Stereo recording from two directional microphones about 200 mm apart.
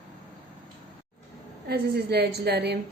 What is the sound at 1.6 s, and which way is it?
A woman's voice, 55° right (ahead or behind).